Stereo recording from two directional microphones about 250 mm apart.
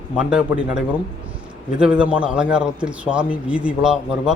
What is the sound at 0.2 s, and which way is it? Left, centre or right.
Speech, centre.